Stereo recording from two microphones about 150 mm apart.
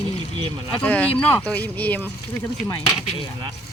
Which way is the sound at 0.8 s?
10° left (ahead or behind).